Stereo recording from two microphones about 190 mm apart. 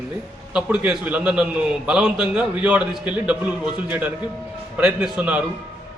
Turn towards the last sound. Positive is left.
turn(degrees=-5)  # may be behind; listen again after turning